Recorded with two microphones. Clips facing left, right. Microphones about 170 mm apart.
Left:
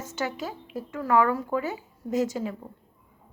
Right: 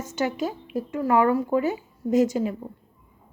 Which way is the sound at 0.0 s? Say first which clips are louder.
Right 5 dB; 15° right (ahead or behind).